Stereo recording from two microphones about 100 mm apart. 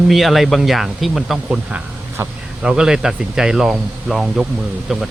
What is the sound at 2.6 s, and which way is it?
Speech, 5° right (ahead or behind).